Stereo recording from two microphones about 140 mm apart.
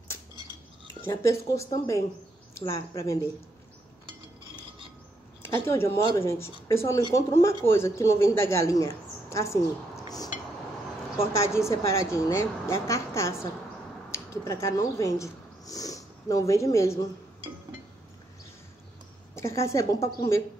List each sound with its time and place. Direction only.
1.2 s speech: 20° left (ahead or behind)
5.4 s speech: 20° left (ahead or behind)
10.0 s a sound: 25° left (ahead or behind)
11.1 s speech: 20° left (ahead or behind)
19.3 s speech: 20° left (ahead or behind)